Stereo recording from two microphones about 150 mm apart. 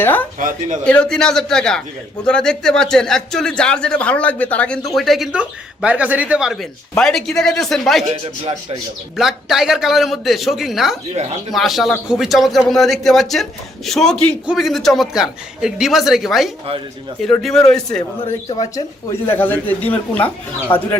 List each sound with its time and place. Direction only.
0.0 s speech: 10° left (ahead or behind)
0.3 s a woman's voice: 60° right (ahead or behind)
0.9 s speech: 5° left (ahead or behind)
9.1 s speech: 5° right (ahead or behind)
18.6 s speech: 20° left (ahead or behind)